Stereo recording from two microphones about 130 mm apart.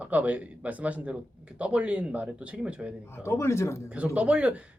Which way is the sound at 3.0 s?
20° left (ahead or behind).